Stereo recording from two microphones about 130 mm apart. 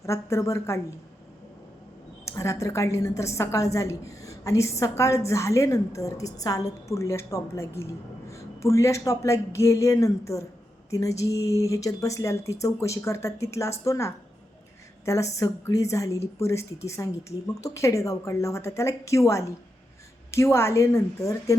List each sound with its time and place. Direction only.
0.0 s a woman's voice: 20° left (ahead or behind)
2.2 s a woman's voice: 25° left (ahead or behind)